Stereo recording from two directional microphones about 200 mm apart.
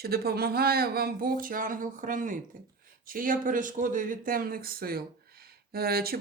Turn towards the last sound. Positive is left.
turn(degrees=-50)  # may be behind; listen again after turning